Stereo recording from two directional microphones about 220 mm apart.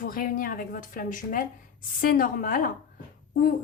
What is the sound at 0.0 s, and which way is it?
A woman's voice, 40° left (ahead or behind).